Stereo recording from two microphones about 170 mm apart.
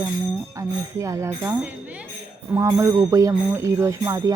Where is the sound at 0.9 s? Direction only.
15° right (ahead or behind).